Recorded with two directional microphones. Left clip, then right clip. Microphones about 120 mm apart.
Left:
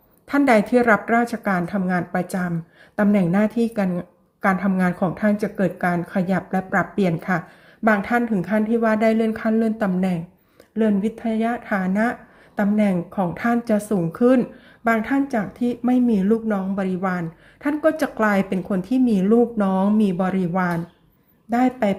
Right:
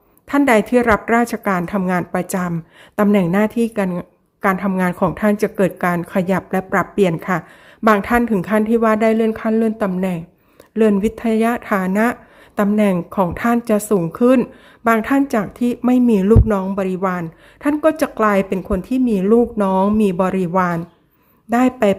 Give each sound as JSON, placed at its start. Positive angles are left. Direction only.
{"t": 0.3, "sound": "speech", "side_deg": -25}
{"t": 7.9, "sound": "speech", "side_deg": -45}
{"t": 10.8, "sound": "speech", "side_deg": -45}